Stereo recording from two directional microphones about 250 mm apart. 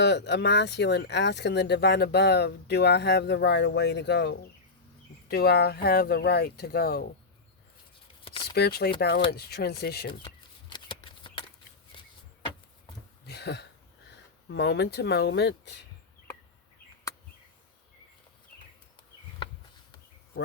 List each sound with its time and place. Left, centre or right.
0.0 s speech: left
8.5 s speech: left
10.1 s shuffling cards: centre
13.2 s a sound: left
14.5 s speech: left